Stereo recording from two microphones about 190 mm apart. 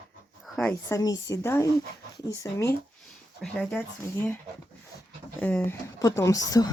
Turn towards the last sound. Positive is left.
turn(degrees=20)  # may be behind; listen again after turning